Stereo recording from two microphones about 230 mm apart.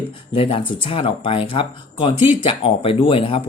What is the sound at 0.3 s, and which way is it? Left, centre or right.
Speech, left.